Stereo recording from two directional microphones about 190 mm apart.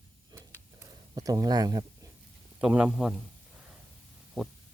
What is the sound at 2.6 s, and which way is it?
Speech, 5° right (ahead or behind).